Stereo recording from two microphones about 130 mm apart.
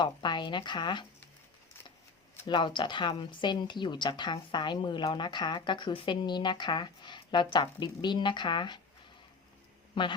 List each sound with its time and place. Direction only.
0.0 s a woman's voice: 35° left (ahead or behind)
2.5 s a woman's voice: 40° left (ahead or behind)
9.9 s a man's voice: 40° left (ahead or behind)